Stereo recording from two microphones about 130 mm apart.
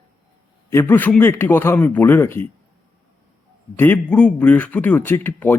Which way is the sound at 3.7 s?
15° left (ahead or behind).